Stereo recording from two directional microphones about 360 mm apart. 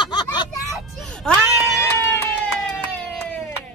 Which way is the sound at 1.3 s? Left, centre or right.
Centre.